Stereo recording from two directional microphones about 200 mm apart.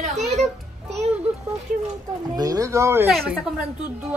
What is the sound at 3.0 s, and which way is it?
Mantra, 5° right (ahead or behind).